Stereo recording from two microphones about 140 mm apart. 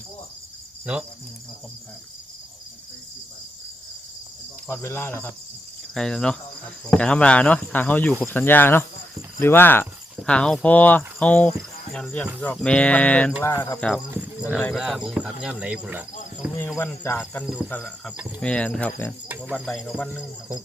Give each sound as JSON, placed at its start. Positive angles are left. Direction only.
{"t": 4.7, "sound": "cricket", "side_deg": 20}
{"t": 5.9, "sound": "cricket", "side_deg": 5}
{"t": 6.8, "sound": "speech", "side_deg": 10}
{"t": 13.4, "sound": "cricket", "side_deg": 20}
{"t": 13.7, "sound": "speech", "side_deg": 5}
{"t": 14.1, "sound": "speech", "side_deg": -10}
{"t": 16.6, "sound": "speech", "side_deg": 15}
{"t": 17.4, "sound": "cricket", "side_deg": -5}
{"t": 17.7, "sound": "speech", "side_deg": 10}
{"t": 19.3, "sound": "speech", "side_deg": -5}
{"t": 19.6, "sound": "cricket", "side_deg": 5}
{"t": 20.1, "sound": "speech", "side_deg": -5}